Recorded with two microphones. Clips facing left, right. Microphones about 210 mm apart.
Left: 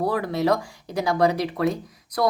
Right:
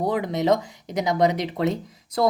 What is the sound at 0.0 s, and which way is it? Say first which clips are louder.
Speech: even; 20° right (ahead or behind).